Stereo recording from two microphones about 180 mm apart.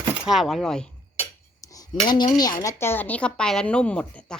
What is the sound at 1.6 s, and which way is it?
Cutlery, 20° left (ahead or behind).